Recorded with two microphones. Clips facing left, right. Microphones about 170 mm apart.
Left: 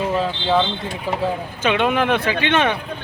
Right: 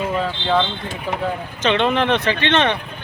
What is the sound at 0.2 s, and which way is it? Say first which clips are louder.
Speech: right 1 dB; 5° left (ahead or behind).